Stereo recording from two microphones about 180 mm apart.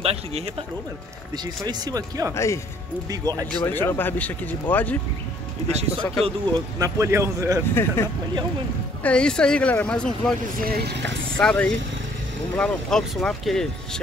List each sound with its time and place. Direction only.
0.0 s speech: 35° right (ahead or behind)
1.4 s speech: 20° right (ahead or behind)
2.3 s speech: 15° left (ahead or behind)
3.1 s speech: 20° right (ahead or behind)
3.5 s speech: 10° left (ahead or behind)
5.7 s speech: 35° right (ahead or behind)
6.8 s a man's voice: 15° right (ahead or behind)
7.7 s speech: 15° left (ahead or behind)
10.7 s speech: 65° right (ahead or behind)
11.3 s speech: 5° left (ahead or behind)